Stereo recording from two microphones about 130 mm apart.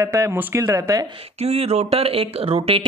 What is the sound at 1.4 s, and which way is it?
Speech, 50° right (ahead or behind).